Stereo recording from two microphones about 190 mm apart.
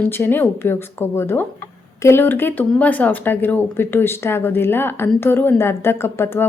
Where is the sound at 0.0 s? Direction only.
10° left (ahead or behind).